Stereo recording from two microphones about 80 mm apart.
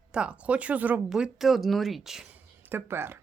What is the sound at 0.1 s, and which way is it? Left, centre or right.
Speech, centre.